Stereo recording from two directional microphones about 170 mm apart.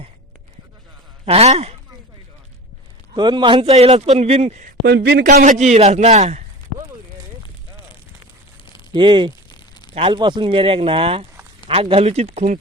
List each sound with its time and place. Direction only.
1.2 s a man's voice: 35° right (ahead or behind)
3.2 s a man's voice: 25° right (ahead or behind)
4.8 s speech: 75° right (ahead or behind)
5.2 s a man's voice: 50° right (ahead or behind)
8.9 s speech: 25° right (ahead or behind)
9.5 s a sound: 25° left (ahead or behind)
9.9 s a man's voice: 30° right (ahead or behind)